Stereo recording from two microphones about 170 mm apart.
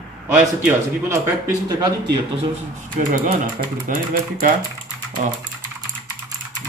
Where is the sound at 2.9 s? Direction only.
45° right (ahead or behind).